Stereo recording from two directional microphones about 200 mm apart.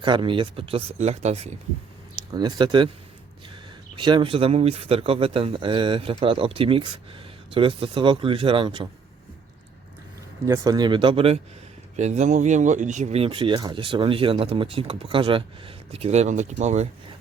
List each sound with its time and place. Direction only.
0.0 s a man's voice: 25° right (ahead or behind)
2.3 s a man's voice: 20° right (ahead or behind)
10.4 s a man's voice: 15° right (ahead or behind); by 17.2 s 35° right (ahead or behind)